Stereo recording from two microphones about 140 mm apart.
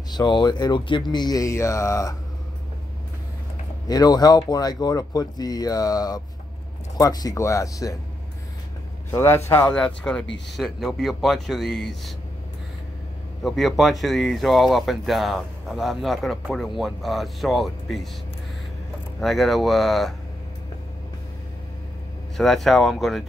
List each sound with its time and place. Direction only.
0.1 s speech: 30° left (ahead or behind)
3.8 s speech: 25° left (ahead or behind)
9.1 s a man's voice: 15° left (ahead or behind)
9.7 s speech: 5° left (ahead or behind)
13.4 s speech: centre (ahead or behind)
19.1 s speech: centre (ahead or behind)
22.4 s speech: centre (ahead or behind)